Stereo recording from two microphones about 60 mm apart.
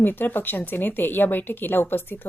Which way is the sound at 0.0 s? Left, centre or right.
Left.